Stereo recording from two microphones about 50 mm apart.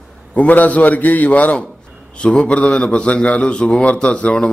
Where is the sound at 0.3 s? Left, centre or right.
Left.